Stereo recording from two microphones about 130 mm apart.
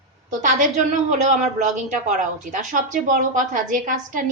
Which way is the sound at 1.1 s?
65° right (ahead or behind).